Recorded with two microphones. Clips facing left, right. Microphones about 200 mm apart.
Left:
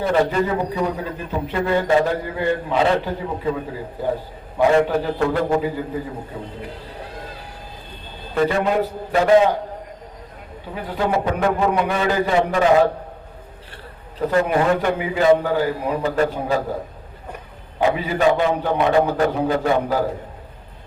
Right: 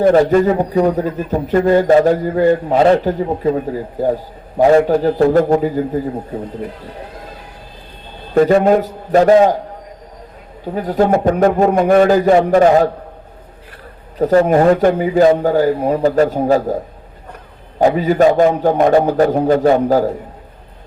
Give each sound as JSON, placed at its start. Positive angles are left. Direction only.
{"t": 0.0, "sound": "a man's voice", "side_deg": -50}
{"t": 8.4, "sound": "a man's voice", "side_deg": -45}
{"t": 10.8, "sound": "a man's voice", "side_deg": -45}
{"t": 14.2, "sound": "a man's voice", "side_deg": -45}
{"t": 17.7, "sound": "a man's voice", "side_deg": -45}